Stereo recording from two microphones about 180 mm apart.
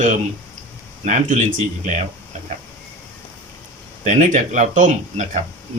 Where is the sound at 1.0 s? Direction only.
40° right (ahead or behind).